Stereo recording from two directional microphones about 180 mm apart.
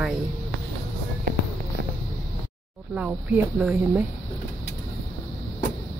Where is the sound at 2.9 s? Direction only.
5° right (ahead or behind).